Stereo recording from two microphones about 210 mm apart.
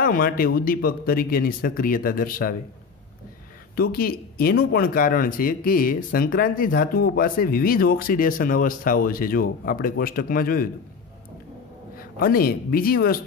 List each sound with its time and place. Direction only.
0.0 s speech: 45° left (ahead or behind)
3.7 s speech: 45° left (ahead or behind)
12.0 s speech: 45° left (ahead or behind)